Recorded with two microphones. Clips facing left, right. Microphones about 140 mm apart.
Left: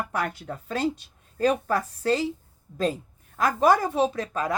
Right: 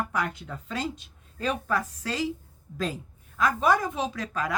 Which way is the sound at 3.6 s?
35° left (ahead or behind).